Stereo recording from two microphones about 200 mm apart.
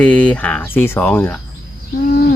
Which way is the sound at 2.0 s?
45° left (ahead or behind).